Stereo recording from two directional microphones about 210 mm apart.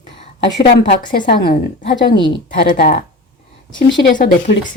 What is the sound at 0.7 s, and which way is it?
Speech, 45° left (ahead or behind).